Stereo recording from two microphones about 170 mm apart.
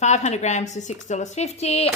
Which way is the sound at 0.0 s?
45° left (ahead or behind).